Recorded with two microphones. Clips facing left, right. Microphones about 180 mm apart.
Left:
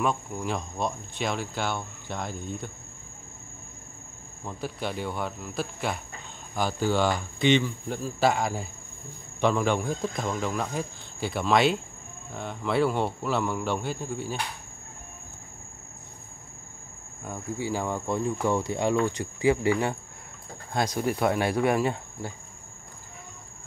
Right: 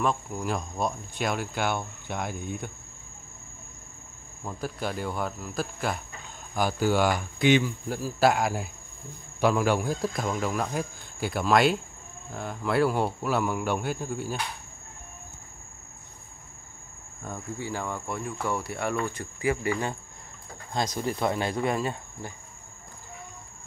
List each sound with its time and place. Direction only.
0.0 s speech: centre (ahead or behind)
4.8 s speech: centre (ahead or behind)
17.2 s speech: 10° left (ahead or behind)
21.0 s speech: 5° left (ahead or behind)